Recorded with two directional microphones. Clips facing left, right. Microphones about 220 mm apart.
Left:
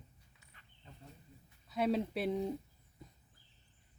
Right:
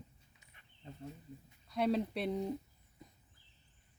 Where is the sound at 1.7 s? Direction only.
Centre (ahead or behind).